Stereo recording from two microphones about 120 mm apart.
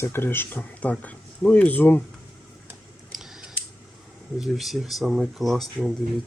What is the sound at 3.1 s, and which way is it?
Scissors, 5° right (ahead or behind).